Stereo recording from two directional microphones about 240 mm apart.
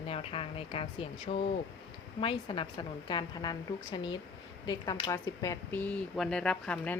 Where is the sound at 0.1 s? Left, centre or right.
Left.